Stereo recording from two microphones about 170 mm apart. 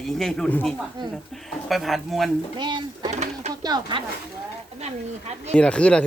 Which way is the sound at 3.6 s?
25° right (ahead or behind).